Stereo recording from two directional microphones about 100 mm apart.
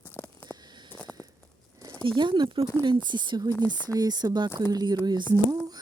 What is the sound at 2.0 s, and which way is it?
A woman's voice, 55° right (ahead or behind).